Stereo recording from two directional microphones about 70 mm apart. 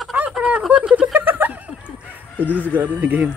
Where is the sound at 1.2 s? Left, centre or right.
Right.